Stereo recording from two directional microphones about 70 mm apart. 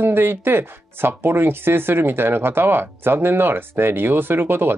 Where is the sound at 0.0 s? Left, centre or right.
Right.